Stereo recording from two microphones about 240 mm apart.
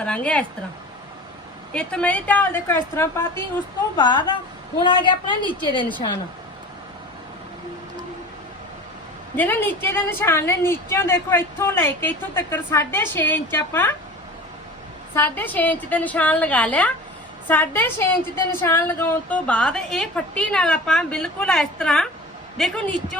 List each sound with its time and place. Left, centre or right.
0.0 s speech: centre
1.7 s a woman's voice: centre
9.3 s a woman's voice: centre
15.1 s a woman's voice: centre